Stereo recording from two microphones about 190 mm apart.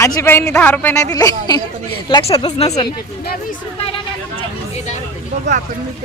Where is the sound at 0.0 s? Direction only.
15° left (ahead or behind); by 2.6 s 30° left (ahead or behind).